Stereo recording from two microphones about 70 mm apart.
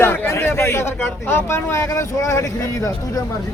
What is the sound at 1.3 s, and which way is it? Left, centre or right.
Speech, left.